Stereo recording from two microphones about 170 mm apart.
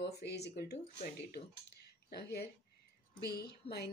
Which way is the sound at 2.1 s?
70° left (ahead or behind).